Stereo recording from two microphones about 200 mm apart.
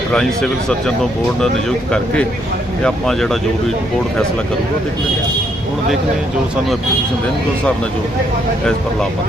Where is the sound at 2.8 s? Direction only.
Centre (ahead or behind).